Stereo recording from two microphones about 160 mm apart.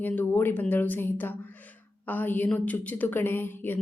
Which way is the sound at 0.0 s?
10° left (ahead or behind).